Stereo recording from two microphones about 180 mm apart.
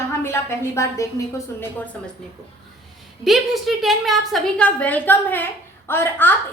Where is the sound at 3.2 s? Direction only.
Centre (ahead or behind).